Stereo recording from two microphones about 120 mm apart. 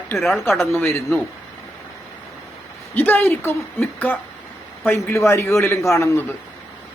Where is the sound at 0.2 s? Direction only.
Centre (ahead or behind).